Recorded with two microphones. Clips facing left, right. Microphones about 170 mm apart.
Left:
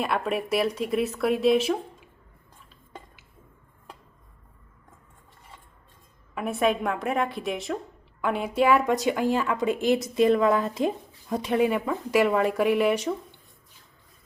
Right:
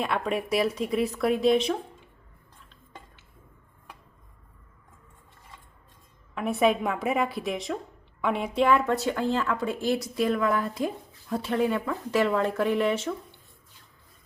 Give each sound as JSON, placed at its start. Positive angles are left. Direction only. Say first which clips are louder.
{"t": 0.0, "sound": "speech", "louder": "left 1 dB", "side_deg": 5}
{"t": 6.3, "sound": "a woman's voice", "louder": "right 1 dB", "side_deg": 0}